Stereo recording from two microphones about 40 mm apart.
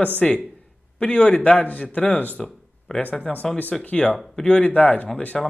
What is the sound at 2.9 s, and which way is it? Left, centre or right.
Speech, centre.